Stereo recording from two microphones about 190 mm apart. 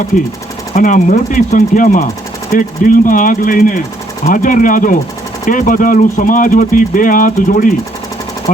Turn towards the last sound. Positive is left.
turn(degrees=45)  # may be behind; listen again after turning